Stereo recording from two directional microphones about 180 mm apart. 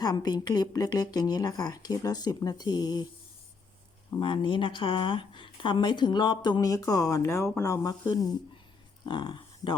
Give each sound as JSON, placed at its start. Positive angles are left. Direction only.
{"t": 0.0, "sound": "speech", "side_deg": 20}
{"t": 4.1, "sound": "speech", "side_deg": 25}